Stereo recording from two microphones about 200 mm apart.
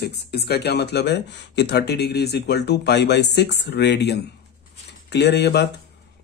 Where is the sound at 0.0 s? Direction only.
55° left (ahead or behind).